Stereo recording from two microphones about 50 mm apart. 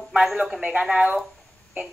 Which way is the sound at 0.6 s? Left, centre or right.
Right.